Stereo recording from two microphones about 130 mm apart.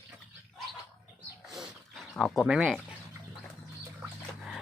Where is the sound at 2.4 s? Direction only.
5° right (ahead or behind).